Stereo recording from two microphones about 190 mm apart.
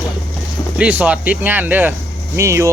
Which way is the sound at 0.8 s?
10° right (ahead or behind).